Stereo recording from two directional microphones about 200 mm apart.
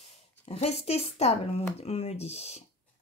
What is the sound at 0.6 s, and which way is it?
Speech, 30° left (ahead or behind).